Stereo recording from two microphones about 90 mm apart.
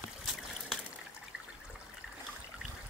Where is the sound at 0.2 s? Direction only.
5° right (ahead or behind).